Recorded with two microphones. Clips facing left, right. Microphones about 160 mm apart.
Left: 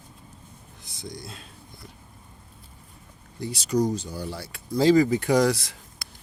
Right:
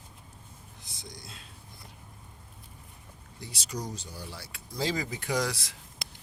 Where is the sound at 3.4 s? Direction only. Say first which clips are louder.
Left 14 dB; 60° left (ahead or behind).